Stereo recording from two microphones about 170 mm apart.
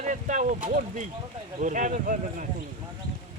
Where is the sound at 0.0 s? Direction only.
45° right (ahead or behind).